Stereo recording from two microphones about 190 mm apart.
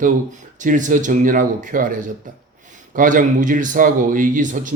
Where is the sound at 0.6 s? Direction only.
40° right (ahead or behind).